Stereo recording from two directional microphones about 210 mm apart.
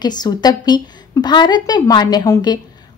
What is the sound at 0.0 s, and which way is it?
A woman's voice, 20° left (ahead or behind).